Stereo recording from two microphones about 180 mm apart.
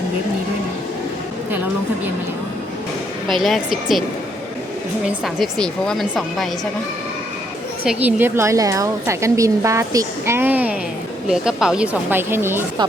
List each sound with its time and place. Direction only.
3.4 s speech: centre (ahead or behind)
5.2 s speech: centre (ahead or behind)
7.9 s a woman's voice: 10° right (ahead or behind)